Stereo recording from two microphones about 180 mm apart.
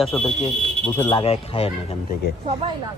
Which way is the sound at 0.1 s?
Centre (ahead or behind).